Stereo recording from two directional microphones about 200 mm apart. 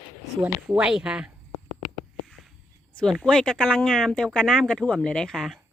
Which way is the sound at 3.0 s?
Centre (ahead or behind).